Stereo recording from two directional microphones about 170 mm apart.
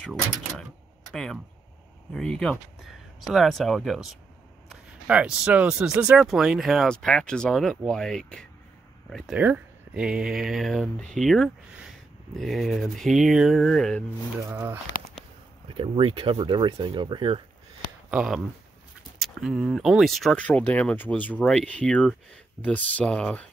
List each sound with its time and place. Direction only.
0.0 s a sound: 5° left (ahead or behind)
1.1 s speech: 5° left (ahead or behind)
14.5 s speech: 15° right (ahead or behind)
15.7 s speech: 30° right (ahead or behind)
18.1 s speech: 5° right (ahead or behind)